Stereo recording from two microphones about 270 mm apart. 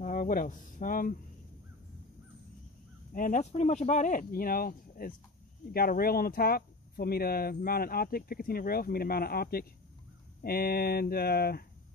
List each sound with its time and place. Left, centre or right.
0.0 s speech: left
3.1 s speech: left